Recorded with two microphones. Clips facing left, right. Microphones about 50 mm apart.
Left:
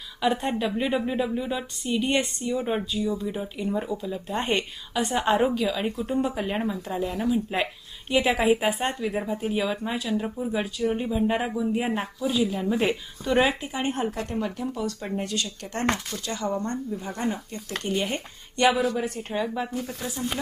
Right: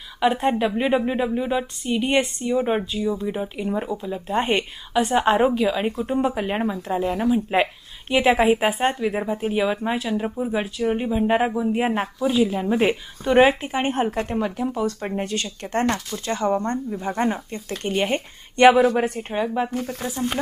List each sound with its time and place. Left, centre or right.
0.2 s speech: right
19.3 s speech: right
19.7 s speech: right